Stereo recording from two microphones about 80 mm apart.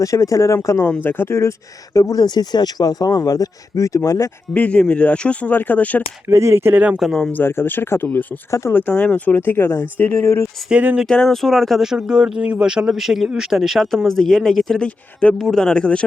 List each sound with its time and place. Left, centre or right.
0.0 s speech: left
0.9 s speech: left
1.4 s speech: left
4.5 s speech: centre
6.2 s speech: right
6.7 s speech: centre
7.0 s speech: centre
7.3 s speech: left
8.7 s speech: centre; by 10.5 s left
10.7 s speech: centre
11.1 s speech: centre